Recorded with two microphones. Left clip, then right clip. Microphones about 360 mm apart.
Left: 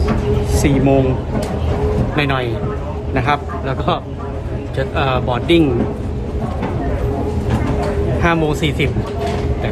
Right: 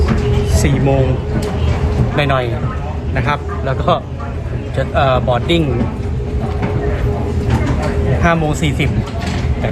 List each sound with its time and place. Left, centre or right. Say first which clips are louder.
0.5 s speech: left 3 dB; centre
2.1 s speech: right 5 dB; centre
8.2 s speech: right 1 dB; centre